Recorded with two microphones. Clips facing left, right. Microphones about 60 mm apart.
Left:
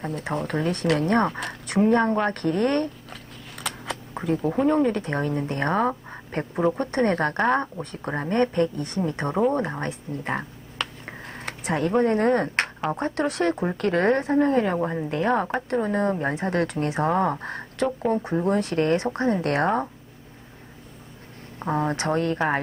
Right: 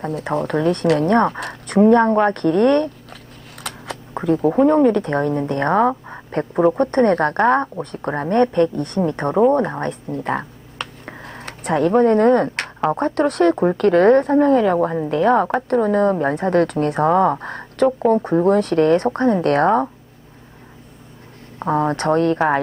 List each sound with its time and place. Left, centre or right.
0.1 s speech: right
4.6 s speech: right
10.1 s a woman's voice: right
11.1 s a sound: right
11.9 s a woman's voice: right
21.6 s speech: right
21.9 s speech: right